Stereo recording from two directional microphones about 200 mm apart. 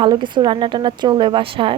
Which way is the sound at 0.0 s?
25° right (ahead or behind).